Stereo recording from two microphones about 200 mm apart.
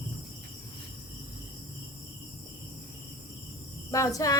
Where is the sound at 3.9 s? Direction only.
15° left (ahead or behind).